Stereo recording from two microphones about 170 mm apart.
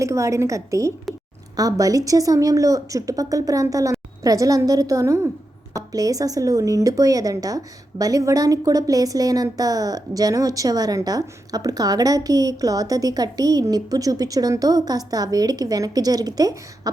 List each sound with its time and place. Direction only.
0.0 s a woman's voice: 15° right (ahead or behind)